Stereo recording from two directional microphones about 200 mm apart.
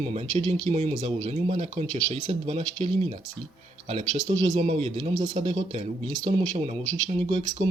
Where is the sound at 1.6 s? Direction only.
30° right (ahead or behind).